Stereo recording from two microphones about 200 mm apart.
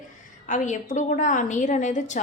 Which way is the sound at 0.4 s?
40° left (ahead or behind).